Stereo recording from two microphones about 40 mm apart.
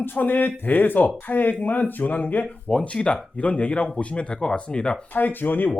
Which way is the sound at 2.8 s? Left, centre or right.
Left.